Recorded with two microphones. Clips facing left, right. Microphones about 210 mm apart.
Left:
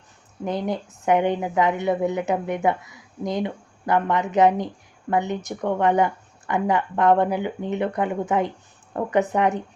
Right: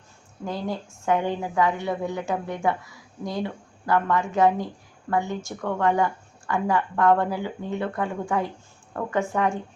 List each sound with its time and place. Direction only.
0.4 s a woman's voice: 20° left (ahead or behind)